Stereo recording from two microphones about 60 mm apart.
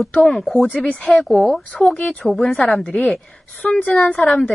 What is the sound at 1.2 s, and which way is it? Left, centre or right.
Speech, centre.